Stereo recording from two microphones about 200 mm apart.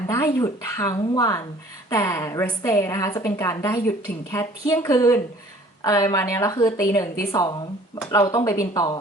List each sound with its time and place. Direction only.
0.1 s a woman's voice: 15° left (ahead or behind)